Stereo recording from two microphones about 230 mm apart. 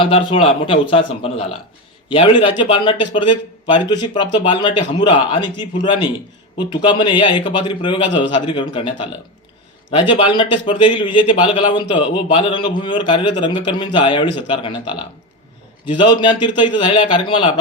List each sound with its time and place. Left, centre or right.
0.0 s a man's voice: left
16.2 s a man's voice: centre